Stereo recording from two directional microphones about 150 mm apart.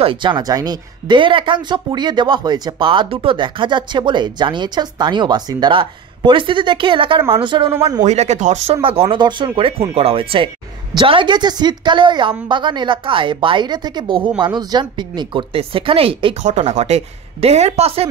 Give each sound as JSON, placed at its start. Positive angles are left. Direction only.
{"t": 0.0, "sound": "speech", "side_deg": -35}
{"t": 8.0, "sound": "speech", "side_deg": -50}
{"t": 8.8, "sound": "speech", "side_deg": -40}
{"t": 16.4, "sound": "speech", "side_deg": -50}